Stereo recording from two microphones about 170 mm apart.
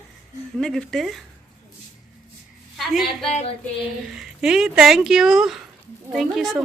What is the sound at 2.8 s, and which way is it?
A woman's voice, centre (ahead or behind).